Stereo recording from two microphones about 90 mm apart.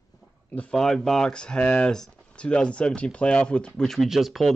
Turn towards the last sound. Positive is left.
turn(degrees=0)  # may be behind; listen again after turning